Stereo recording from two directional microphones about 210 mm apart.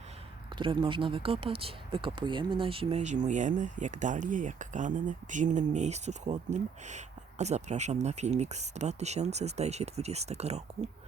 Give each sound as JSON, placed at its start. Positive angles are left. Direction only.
{"t": 0.5, "sound": "speech", "side_deg": -25}